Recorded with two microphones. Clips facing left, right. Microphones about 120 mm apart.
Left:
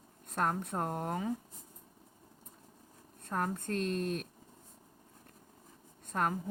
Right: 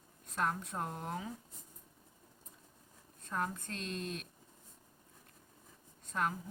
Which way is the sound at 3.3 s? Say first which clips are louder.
Left 4 dB; 50° left (ahead or behind).